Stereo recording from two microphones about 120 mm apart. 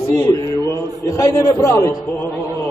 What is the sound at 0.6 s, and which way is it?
A man's voice, 25° left (ahead or behind).